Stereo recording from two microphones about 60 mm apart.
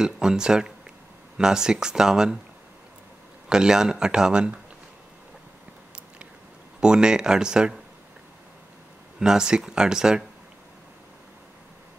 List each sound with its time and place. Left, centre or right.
0.0 s speech: centre
3.4 s speech: centre
6.8 s speech: centre
9.2 s speech: centre